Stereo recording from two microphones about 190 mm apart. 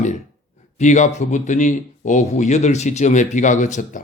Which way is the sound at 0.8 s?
40° left (ahead or behind).